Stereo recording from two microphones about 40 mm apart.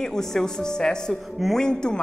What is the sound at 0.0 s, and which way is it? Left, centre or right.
Speech, centre.